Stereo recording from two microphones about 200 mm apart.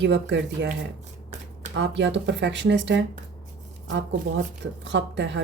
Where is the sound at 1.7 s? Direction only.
65° right (ahead or behind).